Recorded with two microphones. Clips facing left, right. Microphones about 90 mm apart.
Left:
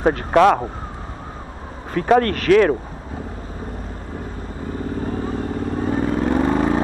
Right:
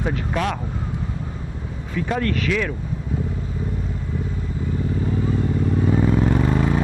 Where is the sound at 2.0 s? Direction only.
55° left (ahead or behind).